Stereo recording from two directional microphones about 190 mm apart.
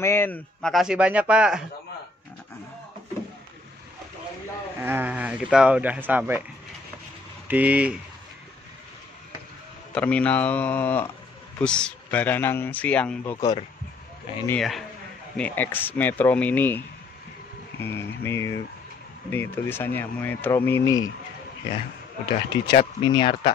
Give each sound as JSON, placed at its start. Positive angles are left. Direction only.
{"t": 0.0, "sound": "a man's voice", "side_deg": 10}
{"t": 4.8, "sound": "speech", "side_deg": -10}
{"t": 7.4, "sound": "speech", "side_deg": -10}
{"t": 9.9, "sound": "speech", "side_deg": 5}
{"t": 14.5, "sound": "a man's voice", "side_deg": 0}
{"t": 22.7, "sound": "speech", "side_deg": 25}